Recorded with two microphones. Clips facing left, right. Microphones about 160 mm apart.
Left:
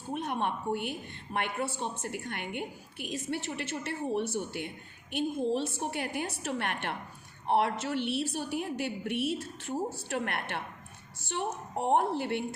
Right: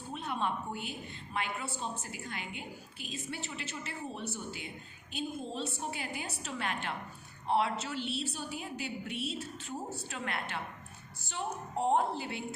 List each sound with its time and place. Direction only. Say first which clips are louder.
0.1 s a woman's voice: left 3 dB; 60° left (ahead or behind)